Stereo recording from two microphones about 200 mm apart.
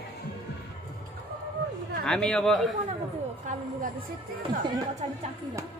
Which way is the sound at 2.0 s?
5° left (ahead or behind).